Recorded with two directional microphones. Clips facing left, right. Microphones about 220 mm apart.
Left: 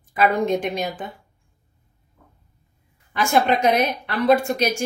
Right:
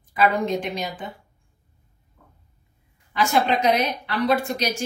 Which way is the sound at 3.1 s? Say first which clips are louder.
Left 2 dB; 50° left (ahead or behind).